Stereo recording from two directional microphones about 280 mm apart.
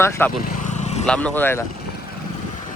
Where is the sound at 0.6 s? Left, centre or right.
Left.